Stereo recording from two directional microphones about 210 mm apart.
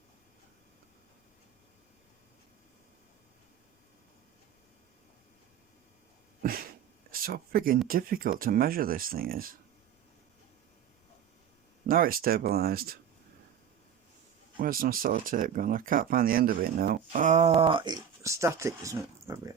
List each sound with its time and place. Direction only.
6.4 s cat: 45° right (ahead or behind)
7.1 s speech: 45° right (ahead or behind)
11.9 s speech: 45° right (ahead or behind)
14.6 s speech: 45° right (ahead or behind); by 19.5 s 15° right (ahead or behind)